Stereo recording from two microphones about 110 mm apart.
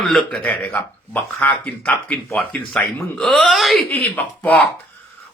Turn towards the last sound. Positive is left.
turn(degrees=15)  # may be behind; listen again after turning